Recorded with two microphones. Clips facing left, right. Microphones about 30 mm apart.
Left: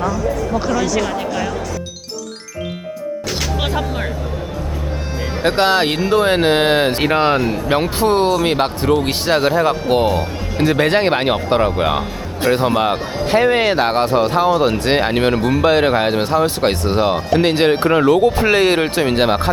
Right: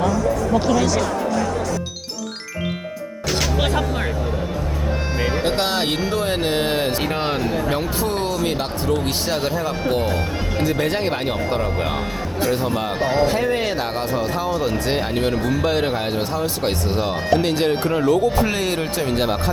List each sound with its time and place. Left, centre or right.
3.4 s music: centre
5.4 s speech: left
6.1 s speech: left
7.7 s speech: left
13.0 s speech: centre
13.2 s speech: left